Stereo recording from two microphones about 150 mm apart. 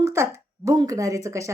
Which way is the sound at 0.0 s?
20° right (ahead or behind).